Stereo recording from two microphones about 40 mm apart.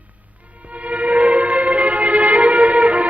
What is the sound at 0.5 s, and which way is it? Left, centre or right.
Music, right.